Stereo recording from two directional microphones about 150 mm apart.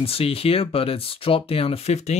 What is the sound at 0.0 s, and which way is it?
Speech, 40° left (ahead or behind).